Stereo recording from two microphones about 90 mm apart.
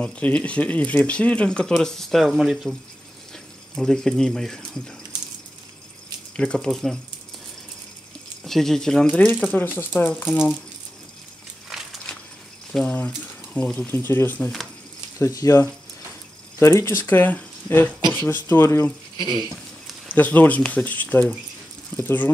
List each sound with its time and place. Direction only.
0.0 s speech: 15° left (ahead or behind); by 2.7 s 5° right (ahead or behind)
3.7 s speech: 5° left (ahead or behind)
6.3 s speech: 10° left (ahead or behind)
8.5 s speech: 5° left (ahead or behind)
9.4 s speech: 20° left (ahead or behind)
11.7 s a sound: 5° right (ahead or behind)
12.9 s speech: 15° left (ahead or behind)
15.1 s speech: 35° left (ahead or behind)
19.1 s speech: 60° right (ahead or behind)
20.1 s speech: 20° left (ahead or behind)